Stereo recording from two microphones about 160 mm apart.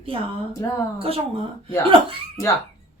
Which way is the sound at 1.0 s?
35° right (ahead or behind).